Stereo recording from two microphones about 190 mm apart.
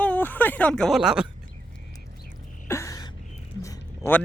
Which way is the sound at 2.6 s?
15° left (ahead or behind).